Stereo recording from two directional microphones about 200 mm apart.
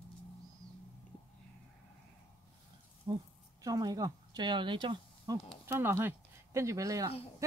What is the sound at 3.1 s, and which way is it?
A woman's voice, 20° right (ahead or behind).